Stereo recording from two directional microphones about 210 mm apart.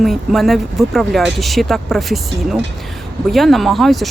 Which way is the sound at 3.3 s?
Centre (ahead or behind).